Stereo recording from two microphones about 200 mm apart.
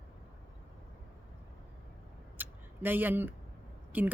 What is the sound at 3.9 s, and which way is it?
Speech, 10° right (ahead or behind).